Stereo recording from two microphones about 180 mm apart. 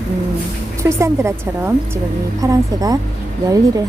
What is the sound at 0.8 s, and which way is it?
A woman's voice, 15° right (ahead or behind).